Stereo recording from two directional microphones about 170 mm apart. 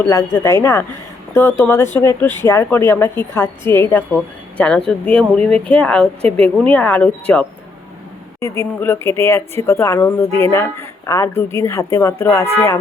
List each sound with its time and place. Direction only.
0.0 s speech: 15° left (ahead or behind)
8.4 s speech: 15° left (ahead or behind)
12.5 s music: 20° left (ahead or behind)